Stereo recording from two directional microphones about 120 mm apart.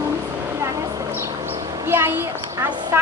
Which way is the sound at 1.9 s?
20° right (ahead or behind).